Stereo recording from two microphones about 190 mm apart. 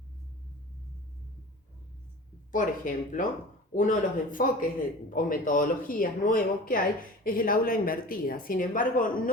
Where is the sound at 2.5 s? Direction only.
45° left (ahead or behind).